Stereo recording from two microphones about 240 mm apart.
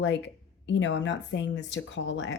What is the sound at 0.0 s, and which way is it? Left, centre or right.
Speech, left.